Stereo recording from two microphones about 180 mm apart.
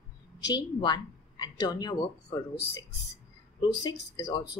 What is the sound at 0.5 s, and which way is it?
A woman's voice, 25° left (ahead or behind).